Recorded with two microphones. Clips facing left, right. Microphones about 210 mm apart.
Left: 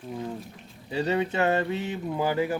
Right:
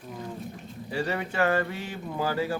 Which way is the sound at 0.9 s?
20° left (ahead or behind).